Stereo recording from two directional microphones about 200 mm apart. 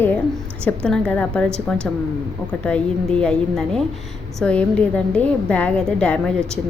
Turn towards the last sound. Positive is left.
turn(degrees=5)  # may be behind; listen again after turning